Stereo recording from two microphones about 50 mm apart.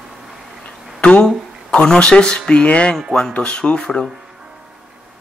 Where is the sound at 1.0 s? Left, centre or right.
Left.